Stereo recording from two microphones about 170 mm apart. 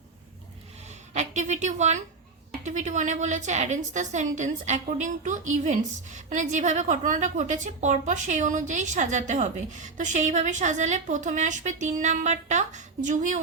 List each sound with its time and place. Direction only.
1.1 s a woman's voice: 45° right (ahead or behind)